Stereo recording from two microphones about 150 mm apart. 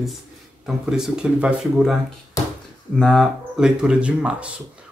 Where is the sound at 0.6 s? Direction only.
5° right (ahead or behind).